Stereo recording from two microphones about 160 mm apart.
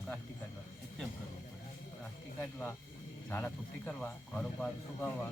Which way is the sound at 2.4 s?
15° left (ahead or behind).